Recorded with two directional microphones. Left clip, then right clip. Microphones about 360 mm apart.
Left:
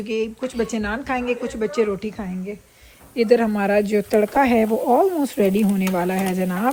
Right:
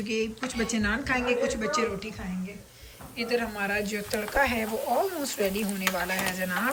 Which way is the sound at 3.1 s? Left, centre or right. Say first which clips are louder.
Left 12 dB; centre.